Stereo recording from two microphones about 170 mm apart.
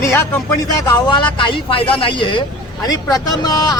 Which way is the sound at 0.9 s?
25° left (ahead or behind).